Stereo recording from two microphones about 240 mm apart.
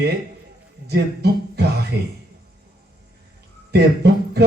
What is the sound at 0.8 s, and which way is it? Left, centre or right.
Music, right.